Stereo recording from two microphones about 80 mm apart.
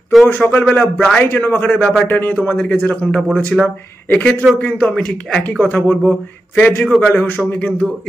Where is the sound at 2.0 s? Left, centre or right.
Left.